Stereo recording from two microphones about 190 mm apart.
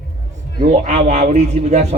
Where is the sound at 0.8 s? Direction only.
40° right (ahead or behind).